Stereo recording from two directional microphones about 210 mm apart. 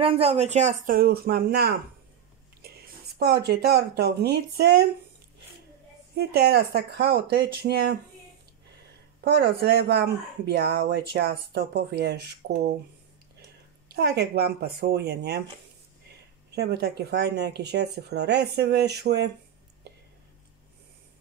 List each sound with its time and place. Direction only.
0.0 s speech: 25° right (ahead or behind); by 1.8 s 50° right (ahead or behind)
3.2 s speech: 50° right (ahead or behind)
6.1 s speech: 50° right (ahead or behind)
9.2 s speech: 50° right (ahead or behind)
13.8 s speech: 50° right (ahead or behind)
16.5 s speech: 50° right (ahead or behind)
19.9 s whispering: 55° right (ahead or behind)